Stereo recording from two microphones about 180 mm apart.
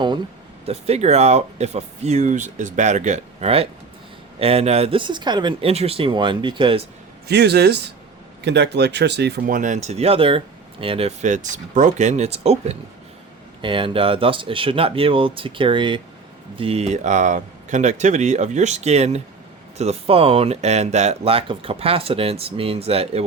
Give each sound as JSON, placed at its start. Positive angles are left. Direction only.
{"t": 0.6, "sound": "speech", "side_deg": -35}
{"t": 7.3, "sound": "speech", "side_deg": -65}
{"t": 9.6, "sound": "speech", "side_deg": -45}